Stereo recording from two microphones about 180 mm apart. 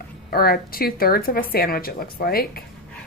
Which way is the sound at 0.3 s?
55° left (ahead or behind).